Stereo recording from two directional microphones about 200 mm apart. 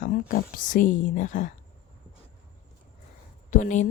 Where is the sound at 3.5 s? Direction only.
40° left (ahead or behind).